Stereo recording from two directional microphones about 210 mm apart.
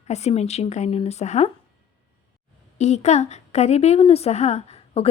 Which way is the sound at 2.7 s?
30° left (ahead or behind).